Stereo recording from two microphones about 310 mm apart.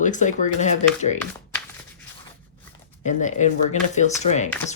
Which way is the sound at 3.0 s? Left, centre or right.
Left.